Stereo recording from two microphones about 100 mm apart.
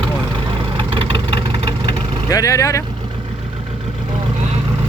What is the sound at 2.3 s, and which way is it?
Speech, 35° left (ahead or behind).